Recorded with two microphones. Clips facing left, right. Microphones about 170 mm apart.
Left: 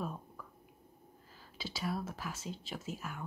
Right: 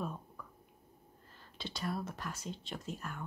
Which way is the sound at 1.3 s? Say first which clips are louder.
Even; 5° left (ahead or behind).